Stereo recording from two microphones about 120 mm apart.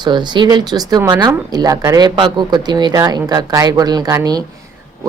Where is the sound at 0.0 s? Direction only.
40° right (ahead or behind).